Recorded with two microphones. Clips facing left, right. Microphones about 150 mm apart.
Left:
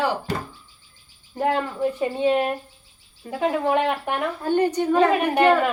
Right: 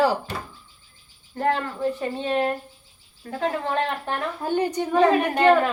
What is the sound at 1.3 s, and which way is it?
Speech, 15° left (ahead or behind).